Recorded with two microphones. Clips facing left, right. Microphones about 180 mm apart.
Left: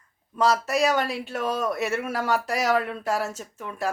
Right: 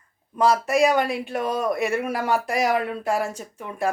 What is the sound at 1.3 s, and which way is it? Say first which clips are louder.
Speech: right 2 dB; 15° right (ahead or behind).